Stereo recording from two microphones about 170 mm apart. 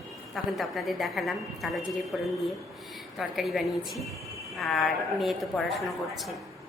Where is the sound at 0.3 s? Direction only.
Centre (ahead or behind).